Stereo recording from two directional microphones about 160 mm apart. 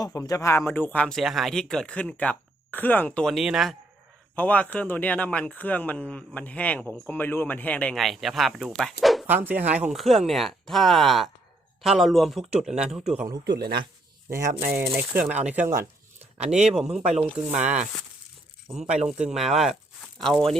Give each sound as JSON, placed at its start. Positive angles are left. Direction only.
{"t": 0.0, "sound": "speech", "side_deg": 20}
{"t": 4.4, "sound": "a man's voice", "side_deg": 10}
{"t": 9.2, "sound": "a man's voice", "side_deg": -10}
{"t": 13.4, "sound": "speech", "side_deg": -90}
{"t": 14.6, "sound": "a man's voice", "side_deg": -15}
{"t": 18.9, "sound": "a man's voice", "side_deg": -5}